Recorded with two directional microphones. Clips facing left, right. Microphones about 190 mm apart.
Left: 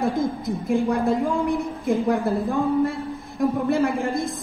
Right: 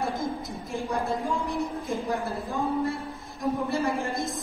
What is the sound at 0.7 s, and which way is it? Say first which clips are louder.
Speech: left 7 dB; 55° left (ahead or behind).